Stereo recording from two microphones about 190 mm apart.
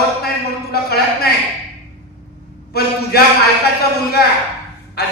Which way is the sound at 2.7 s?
55° left (ahead or behind).